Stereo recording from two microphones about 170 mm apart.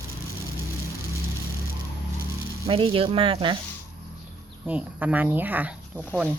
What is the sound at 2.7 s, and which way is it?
Speech, 30° right (ahead or behind).